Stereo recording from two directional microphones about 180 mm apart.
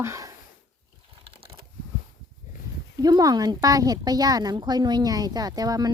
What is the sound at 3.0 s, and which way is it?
Speech, 20° right (ahead or behind).